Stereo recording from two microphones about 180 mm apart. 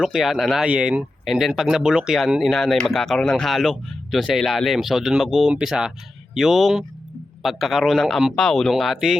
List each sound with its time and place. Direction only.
0.0 s speech: centre (ahead or behind)